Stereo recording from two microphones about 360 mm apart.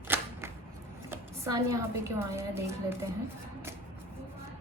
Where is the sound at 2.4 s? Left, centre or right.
Centre.